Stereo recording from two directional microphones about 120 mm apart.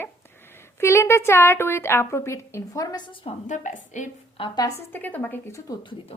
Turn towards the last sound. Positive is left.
turn(degrees=15)  # may be behind; listen again after turning